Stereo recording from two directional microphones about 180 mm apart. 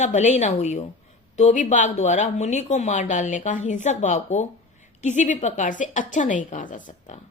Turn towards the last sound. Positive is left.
turn(degrees=45)  # may be behind; listen again after turning